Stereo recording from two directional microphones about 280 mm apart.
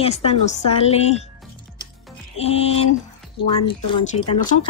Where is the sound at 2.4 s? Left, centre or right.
Left.